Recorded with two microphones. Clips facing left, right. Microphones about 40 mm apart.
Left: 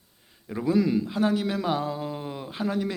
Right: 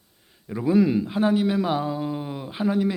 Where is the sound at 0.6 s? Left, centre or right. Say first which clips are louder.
Right 3 dB; centre.